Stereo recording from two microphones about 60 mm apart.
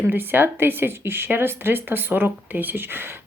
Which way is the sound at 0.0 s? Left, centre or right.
Right.